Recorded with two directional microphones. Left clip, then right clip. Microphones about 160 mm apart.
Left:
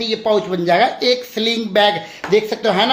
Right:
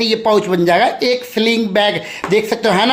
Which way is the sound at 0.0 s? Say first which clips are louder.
Right 3 dB; 35° right (ahead or behind).